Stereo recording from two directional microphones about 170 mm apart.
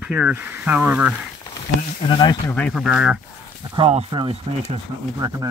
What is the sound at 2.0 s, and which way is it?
Speech, 25° left (ahead or behind).